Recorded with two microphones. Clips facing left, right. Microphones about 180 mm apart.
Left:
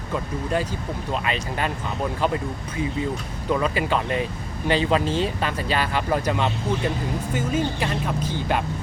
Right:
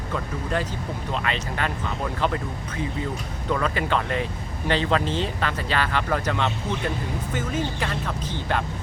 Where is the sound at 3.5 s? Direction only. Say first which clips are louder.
Left 2 dB; 15° left (ahead or behind).